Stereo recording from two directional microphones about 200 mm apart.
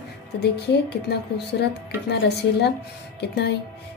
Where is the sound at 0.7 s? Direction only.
55° left (ahead or behind).